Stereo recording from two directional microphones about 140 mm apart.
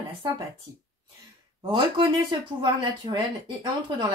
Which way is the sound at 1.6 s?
35° right (ahead or behind).